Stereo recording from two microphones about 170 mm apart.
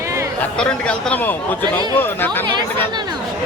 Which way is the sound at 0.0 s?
15° right (ahead or behind).